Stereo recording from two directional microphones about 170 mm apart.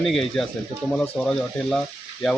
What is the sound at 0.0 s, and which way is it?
Speech, centre (ahead or behind).